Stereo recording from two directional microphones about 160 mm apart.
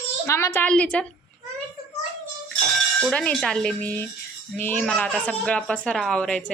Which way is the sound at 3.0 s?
5° left (ahead or behind).